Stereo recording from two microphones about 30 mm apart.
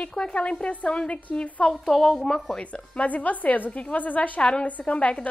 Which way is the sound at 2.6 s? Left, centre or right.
Left.